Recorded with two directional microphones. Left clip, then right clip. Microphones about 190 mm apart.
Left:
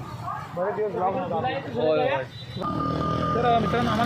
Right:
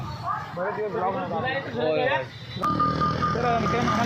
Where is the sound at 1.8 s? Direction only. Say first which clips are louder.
Left 3 dB; 10° left (ahead or behind).